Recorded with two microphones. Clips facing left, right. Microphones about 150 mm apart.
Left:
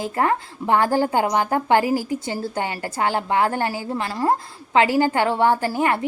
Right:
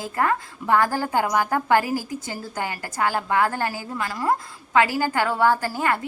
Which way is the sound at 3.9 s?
30° left (ahead or behind).